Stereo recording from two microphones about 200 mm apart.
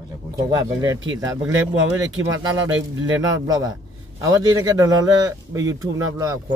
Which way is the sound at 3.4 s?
15° right (ahead or behind).